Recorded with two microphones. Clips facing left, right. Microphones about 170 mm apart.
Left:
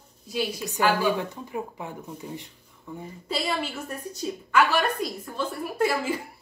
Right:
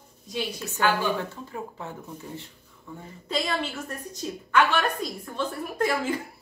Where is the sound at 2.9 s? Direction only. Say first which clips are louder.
Right 1 dB; 10° left (ahead or behind).